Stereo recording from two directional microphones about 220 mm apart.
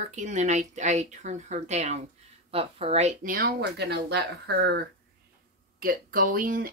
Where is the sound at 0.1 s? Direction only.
35° right (ahead or behind).